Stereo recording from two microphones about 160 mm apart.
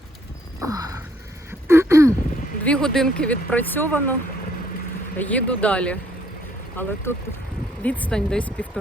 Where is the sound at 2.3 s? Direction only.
55° left (ahead or behind).